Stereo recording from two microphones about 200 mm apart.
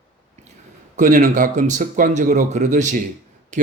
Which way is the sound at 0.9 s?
40° right (ahead or behind).